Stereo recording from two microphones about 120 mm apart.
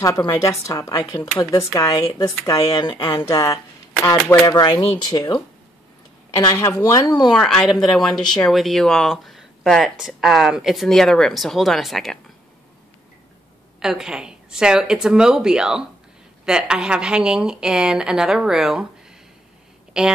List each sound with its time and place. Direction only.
0.3 s speech: 25° left (ahead or behind)
3.3 s speech: 25° left (ahead or behind)
7.3 s speech: 5° left (ahead or behind)
13.7 s a woman's voice: 5° right (ahead or behind)
19.9 s speech: 5° right (ahead or behind)